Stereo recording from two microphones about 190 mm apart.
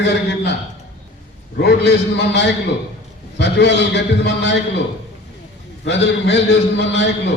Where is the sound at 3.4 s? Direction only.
65° left (ahead or behind).